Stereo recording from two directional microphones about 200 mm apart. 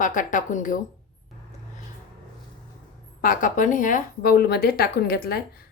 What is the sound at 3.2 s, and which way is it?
Speech, 40° left (ahead or behind).